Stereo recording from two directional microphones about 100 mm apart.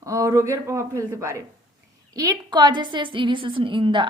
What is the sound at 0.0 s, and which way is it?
A woman's voice, 35° right (ahead or behind).